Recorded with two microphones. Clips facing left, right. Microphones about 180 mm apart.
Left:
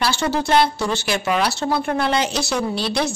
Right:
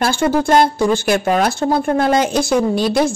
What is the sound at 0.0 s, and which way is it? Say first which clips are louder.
Speech: right 5 dB; 50° right (ahead or behind).